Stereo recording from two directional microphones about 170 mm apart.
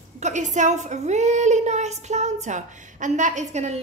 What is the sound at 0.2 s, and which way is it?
A woman's voice, 45° right (ahead or behind).